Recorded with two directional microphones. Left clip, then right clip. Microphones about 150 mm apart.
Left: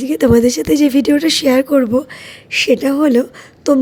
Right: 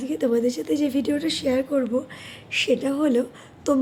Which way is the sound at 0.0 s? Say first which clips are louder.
Left 11 dB; 60° left (ahead or behind).